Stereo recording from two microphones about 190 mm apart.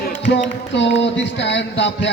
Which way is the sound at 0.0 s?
60° left (ahead or behind).